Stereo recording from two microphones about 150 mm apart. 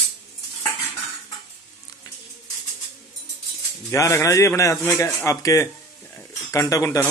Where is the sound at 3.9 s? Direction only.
20° left (ahead or behind).